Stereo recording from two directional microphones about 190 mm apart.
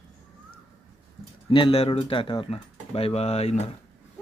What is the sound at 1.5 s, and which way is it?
Speech, 30° left (ahead or behind).